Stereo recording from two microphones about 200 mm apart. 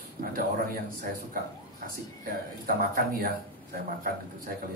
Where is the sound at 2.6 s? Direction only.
45° right (ahead or behind).